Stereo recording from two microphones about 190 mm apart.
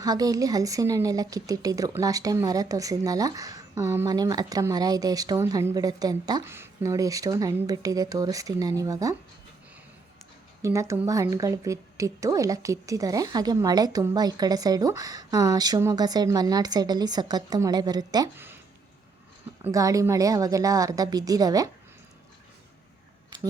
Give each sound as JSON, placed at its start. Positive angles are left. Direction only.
{"t": 0.0, "sound": "speech", "side_deg": -20}
{"t": 10.6, "sound": "speech", "side_deg": -15}
{"t": 19.6, "sound": "a woman's voice", "side_deg": -15}